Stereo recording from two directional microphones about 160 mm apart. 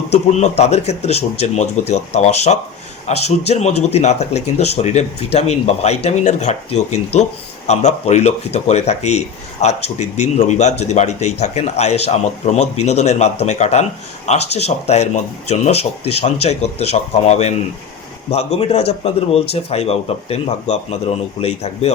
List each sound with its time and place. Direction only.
0.1 s a man's voice: 45° left (ahead or behind)